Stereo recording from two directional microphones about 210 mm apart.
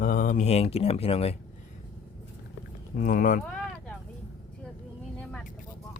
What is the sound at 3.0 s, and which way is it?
Speech, 40° left (ahead or behind).